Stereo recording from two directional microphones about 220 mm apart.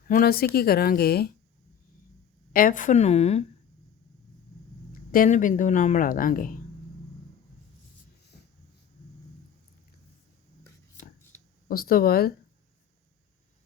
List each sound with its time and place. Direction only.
0.0 s speech: 40° left (ahead or behind)
2.5 s speech: 40° left (ahead or behind)
5.1 s speech: 35° left (ahead or behind)
11.7 s speech: 40° left (ahead or behind)